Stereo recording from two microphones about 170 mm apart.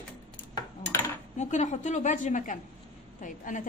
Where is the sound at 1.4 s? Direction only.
45° left (ahead or behind).